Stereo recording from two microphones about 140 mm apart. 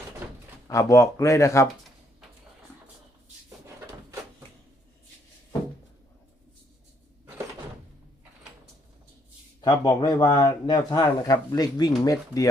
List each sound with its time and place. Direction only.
0.7 s speech: 20° left (ahead or behind)
9.6 s speech: 30° left (ahead or behind)